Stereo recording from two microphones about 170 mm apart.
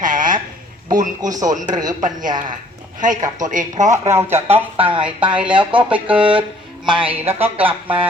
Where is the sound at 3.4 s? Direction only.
50° right (ahead or behind).